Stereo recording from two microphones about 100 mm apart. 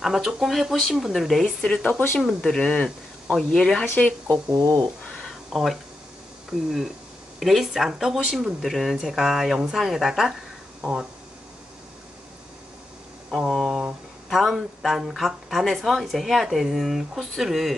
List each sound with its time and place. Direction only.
0.0 s a woman's voice: centre (ahead or behind)
4.6 s speech: 40° right (ahead or behind)
5.2 s a sound: centre (ahead or behind)
7.3 s a woman's voice: centre (ahead or behind)
13.3 s a woman's voice: centre (ahead or behind)